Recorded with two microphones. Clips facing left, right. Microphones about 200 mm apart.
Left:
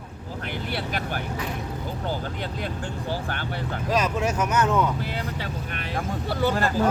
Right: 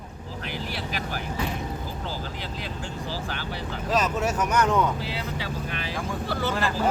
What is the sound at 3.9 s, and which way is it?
Speech, 10° left (ahead or behind).